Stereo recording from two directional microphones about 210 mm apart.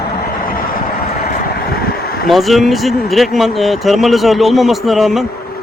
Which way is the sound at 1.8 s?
45° left (ahead or behind).